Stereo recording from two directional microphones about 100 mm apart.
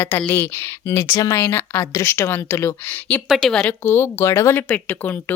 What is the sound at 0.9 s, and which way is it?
Speech, 30° left (ahead or behind).